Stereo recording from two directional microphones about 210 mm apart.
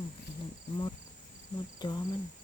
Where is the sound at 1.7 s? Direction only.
20° left (ahead or behind).